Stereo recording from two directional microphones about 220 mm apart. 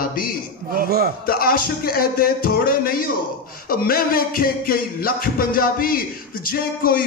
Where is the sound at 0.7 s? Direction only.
45° right (ahead or behind).